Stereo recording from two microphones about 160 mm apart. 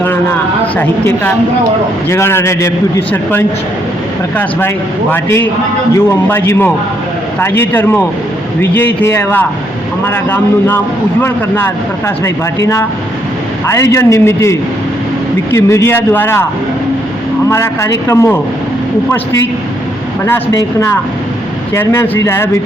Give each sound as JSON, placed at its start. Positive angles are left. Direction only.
{"t": 0.8, "sound": "a man's voice", "side_deg": 15}
{"t": 5.1, "sound": "a man's voice", "side_deg": 15}
{"t": 13.9, "sound": "a man's voice", "side_deg": 15}
{"t": 15.5, "sound": "a man's voice", "side_deg": 15}
{"t": 17.5, "sound": "a man's voice", "side_deg": 15}
{"t": 20.2, "sound": "a man's voice", "side_deg": 20}